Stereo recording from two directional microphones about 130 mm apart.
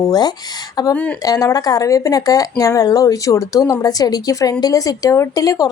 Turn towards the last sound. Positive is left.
turn(degrees=25)  # may be behind; listen again after turning